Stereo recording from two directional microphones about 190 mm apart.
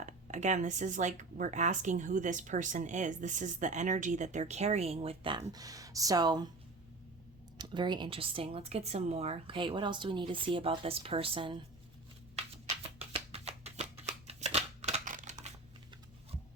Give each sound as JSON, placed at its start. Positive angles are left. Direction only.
{"t": 0.0, "sound": "speech", "side_deg": -40}
{"t": 7.6, "sound": "speech", "side_deg": -25}
{"t": 13.0, "sound": "shuffling cards", "side_deg": -30}